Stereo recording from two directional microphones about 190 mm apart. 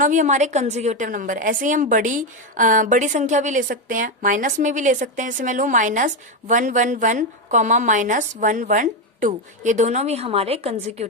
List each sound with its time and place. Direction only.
0.0 s a woman's voice: 40° right (ahead or behind)